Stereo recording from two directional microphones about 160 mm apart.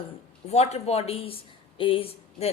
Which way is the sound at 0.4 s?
40° left (ahead or behind).